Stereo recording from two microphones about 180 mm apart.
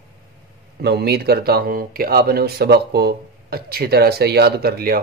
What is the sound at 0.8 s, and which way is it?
Speech, 65° right (ahead or behind).